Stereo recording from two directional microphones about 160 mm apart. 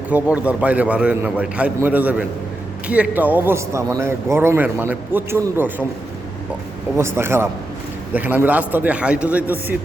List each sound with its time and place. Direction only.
0.1 s a man's voice: 10° right (ahead or behind)
6.9 s a man's voice: 15° right (ahead or behind)